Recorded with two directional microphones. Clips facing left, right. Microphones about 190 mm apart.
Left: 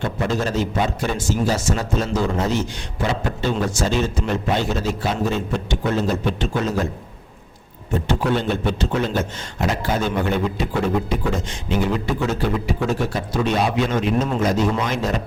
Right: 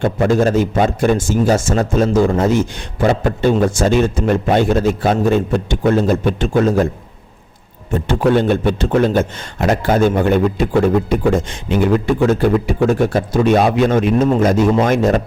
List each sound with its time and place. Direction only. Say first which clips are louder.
0.0 s a man's voice: right 9 dB; 50° right (ahead or behind)
8.0 s a man's voice: right 8 dB; 55° right (ahead or behind)